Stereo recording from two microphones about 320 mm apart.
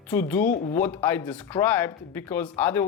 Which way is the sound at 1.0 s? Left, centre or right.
Centre.